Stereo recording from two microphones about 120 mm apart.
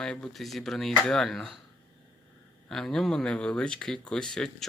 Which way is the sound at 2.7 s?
5° left (ahead or behind).